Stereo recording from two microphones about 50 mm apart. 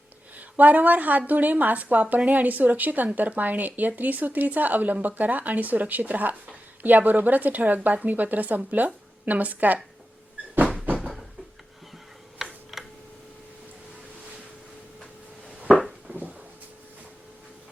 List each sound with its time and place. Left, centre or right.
0.3 s a woman's voice: right
12.4 s tick-tock: centre
16.1 s a sound: right